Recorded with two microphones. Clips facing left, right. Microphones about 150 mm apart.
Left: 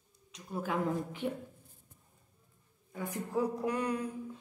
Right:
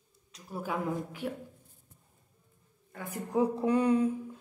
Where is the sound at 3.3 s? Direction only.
30° right (ahead or behind).